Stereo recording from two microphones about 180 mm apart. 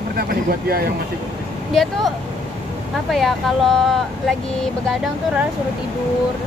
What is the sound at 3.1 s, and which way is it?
Speech, centre (ahead or behind).